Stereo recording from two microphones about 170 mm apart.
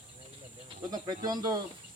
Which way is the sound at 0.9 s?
25° right (ahead or behind).